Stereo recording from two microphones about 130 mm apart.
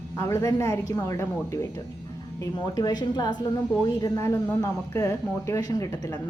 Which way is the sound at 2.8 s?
30° left (ahead or behind).